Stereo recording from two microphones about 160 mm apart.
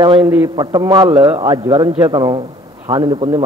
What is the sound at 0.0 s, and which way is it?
A man's voice, 25° right (ahead or behind).